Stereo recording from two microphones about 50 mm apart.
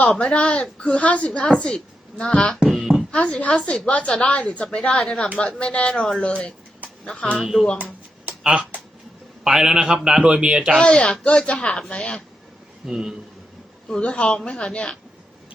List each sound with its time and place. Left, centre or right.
0.2 s a woman's voice: left
7.3 s speech: centre
7.8 s a sound: right
9.4 s a man's voice: centre
10.8 s speech: left
12.8 s a man's voice: centre
13.9 s speech: left